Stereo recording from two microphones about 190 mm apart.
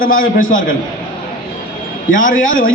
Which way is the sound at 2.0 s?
45° left (ahead or behind).